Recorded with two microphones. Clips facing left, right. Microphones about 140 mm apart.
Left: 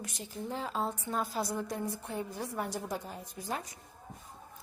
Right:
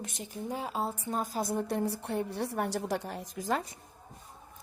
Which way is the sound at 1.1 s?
40° right (ahead or behind).